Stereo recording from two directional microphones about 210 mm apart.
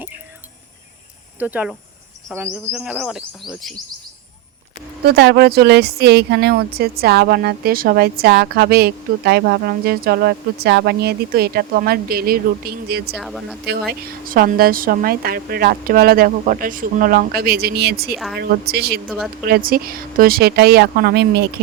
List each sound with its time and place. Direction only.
1.4 s speech: 5° right (ahead or behind)
5.0 s a woman's voice: 50° right (ahead or behind)
13.1 s speech: centre (ahead or behind)
13.7 s a woman's voice: 45° right (ahead or behind)
19.0 s speech: centre (ahead or behind)
19.5 s a woman's voice: 45° right (ahead or behind)